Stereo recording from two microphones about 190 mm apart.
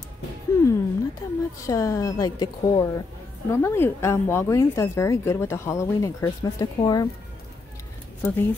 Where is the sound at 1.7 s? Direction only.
15° left (ahead or behind).